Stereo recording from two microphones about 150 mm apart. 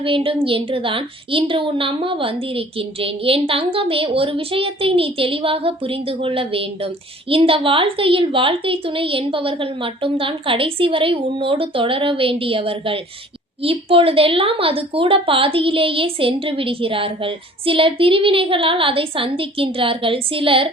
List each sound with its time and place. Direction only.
0.0 s a woman's voice: 35° right (ahead or behind)